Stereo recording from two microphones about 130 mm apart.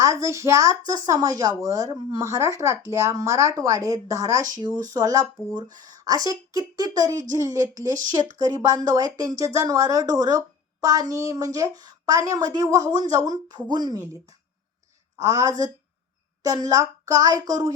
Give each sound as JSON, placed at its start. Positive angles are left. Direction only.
{"t": 0.0, "sound": "speech", "side_deg": -25}
{"t": 15.2, "sound": "speech", "side_deg": -25}